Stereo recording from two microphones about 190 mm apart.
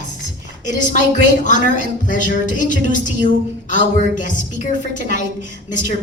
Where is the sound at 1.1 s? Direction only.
40° left (ahead or behind).